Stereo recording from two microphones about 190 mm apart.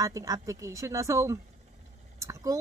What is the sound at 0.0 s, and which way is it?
Speech, 15° right (ahead or behind).